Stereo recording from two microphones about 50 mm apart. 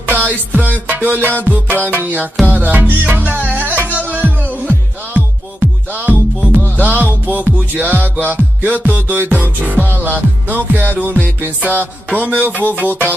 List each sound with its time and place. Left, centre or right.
0.0 s music: right